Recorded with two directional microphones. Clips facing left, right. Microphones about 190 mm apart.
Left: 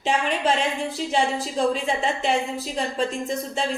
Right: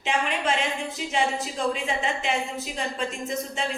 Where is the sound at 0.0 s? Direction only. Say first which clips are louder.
Left 3 dB; 35° left (ahead or behind).